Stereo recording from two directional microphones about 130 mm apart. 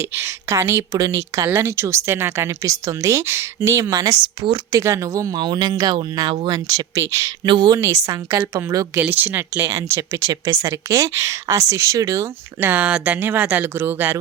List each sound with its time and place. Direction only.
0.0 s speech: 20° right (ahead or behind)
7.4 s speech: 35° right (ahead or behind)
7.8 s speech: 25° right (ahead or behind)